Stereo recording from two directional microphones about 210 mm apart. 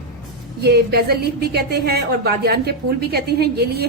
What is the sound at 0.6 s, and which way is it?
A woman's voice, 50° right (ahead or behind).